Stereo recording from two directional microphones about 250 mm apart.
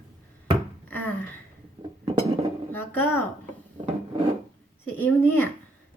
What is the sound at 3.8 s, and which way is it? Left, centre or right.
Rub, right.